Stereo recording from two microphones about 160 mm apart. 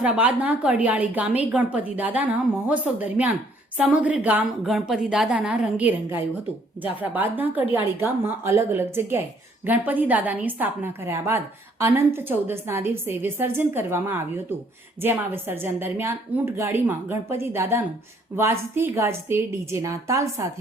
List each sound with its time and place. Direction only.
0.0 s a woman's voice: 10° right (ahead or behind)